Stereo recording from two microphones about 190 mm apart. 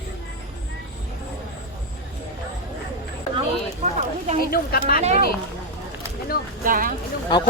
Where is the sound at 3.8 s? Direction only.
35° right (ahead or behind).